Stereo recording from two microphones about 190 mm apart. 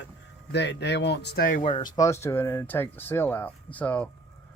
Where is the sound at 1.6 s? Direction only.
25° left (ahead or behind).